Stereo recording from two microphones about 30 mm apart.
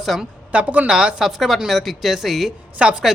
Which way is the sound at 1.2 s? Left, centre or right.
Centre.